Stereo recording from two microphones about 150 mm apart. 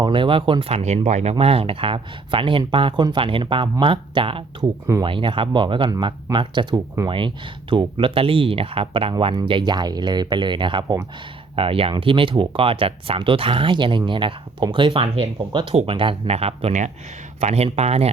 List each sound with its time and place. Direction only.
0.0 s speech: 35° right (ahead or behind)